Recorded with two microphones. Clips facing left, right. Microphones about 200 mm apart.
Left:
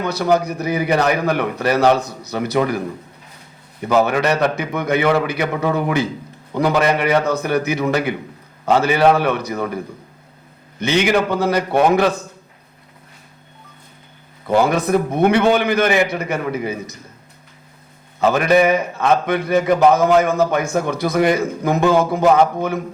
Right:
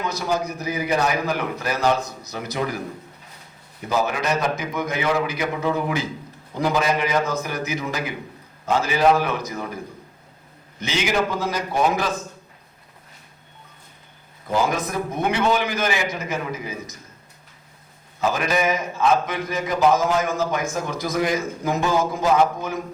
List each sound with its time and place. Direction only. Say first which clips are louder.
0.0 s a man's voice: left 7 dB; 65° left (ahead or behind)
3.8 s a man's voice: left 7 dB; 65° left (ahead or behind)
10.8 s a man's voice: left 6 dB; 60° left (ahead or behind)
14.4 s a man's voice: left 6 dB; 65° left (ahead or behind)
18.2 s a man's voice: left 8 dB; 60° left (ahead or behind)